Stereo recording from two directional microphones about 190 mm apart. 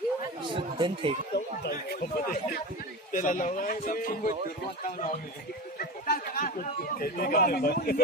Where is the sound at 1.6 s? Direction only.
55° left (ahead or behind).